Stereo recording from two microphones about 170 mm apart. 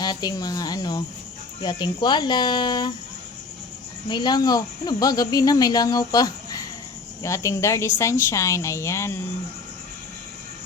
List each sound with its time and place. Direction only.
0.0 s speech: 25° left (ahead or behind)
4.1 s speech: 25° left (ahead or behind)